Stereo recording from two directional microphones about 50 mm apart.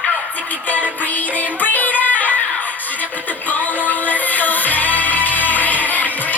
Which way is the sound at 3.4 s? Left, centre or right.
Left.